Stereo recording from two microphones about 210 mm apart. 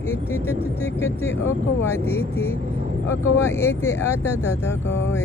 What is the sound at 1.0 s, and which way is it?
Mantra, 10° left (ahead or behind).